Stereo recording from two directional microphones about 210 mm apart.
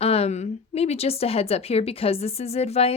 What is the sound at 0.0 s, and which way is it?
A woman's voice, 30° left (ahead or behind).